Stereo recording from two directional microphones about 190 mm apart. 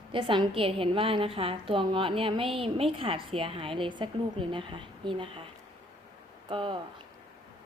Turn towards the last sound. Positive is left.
turn(degrees=-25)  # may be behind; listen again after turning